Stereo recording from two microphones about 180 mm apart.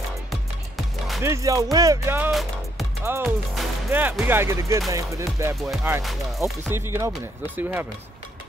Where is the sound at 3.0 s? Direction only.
15° right (ahead or behind).